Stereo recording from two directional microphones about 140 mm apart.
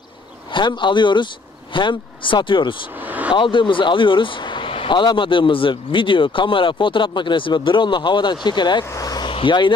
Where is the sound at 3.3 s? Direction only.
35° left (ahead or behind).